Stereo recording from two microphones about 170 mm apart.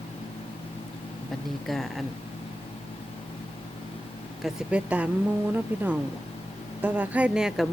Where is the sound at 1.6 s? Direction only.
Centre (ahead or behind).